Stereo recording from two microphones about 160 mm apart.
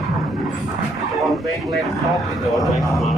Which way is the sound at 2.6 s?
Centre (ahead or behind).